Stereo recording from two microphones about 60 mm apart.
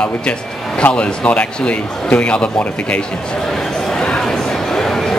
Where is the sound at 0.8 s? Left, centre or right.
Left.